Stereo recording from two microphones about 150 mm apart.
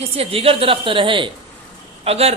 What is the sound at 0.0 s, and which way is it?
A woman's voice, 40° right (ahead or behind).